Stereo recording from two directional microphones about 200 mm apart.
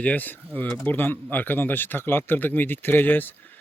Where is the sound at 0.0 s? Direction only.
10° left (ahead or behind).